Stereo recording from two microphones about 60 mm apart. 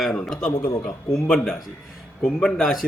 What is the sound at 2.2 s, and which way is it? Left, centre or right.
Speech, centre.